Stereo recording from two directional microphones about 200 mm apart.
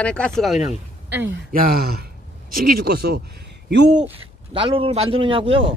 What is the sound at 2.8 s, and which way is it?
Speech, 50° right (ahead or behind).